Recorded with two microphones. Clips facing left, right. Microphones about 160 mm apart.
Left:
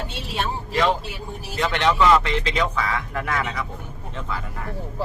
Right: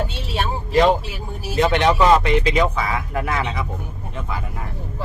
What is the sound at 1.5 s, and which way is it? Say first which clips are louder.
Speech: right 4 dB; 20° right (ahead or behind).